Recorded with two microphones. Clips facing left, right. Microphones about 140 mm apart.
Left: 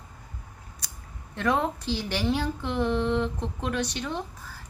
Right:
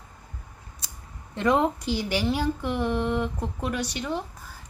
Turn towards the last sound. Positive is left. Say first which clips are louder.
# right 1 dB
turn(degrees=-10)  # may be behind; listen again after turning